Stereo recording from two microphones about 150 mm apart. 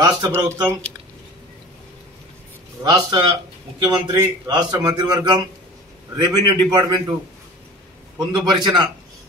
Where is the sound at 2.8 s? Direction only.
30° right (ahead or behind).